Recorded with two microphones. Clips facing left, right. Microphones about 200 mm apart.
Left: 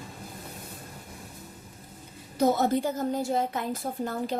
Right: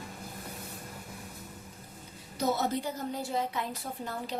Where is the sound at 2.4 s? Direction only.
50° left (ahead or behind).